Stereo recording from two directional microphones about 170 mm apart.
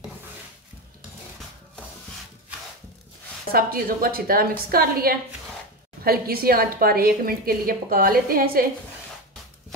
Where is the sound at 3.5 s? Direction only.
60° right (ahead or behind).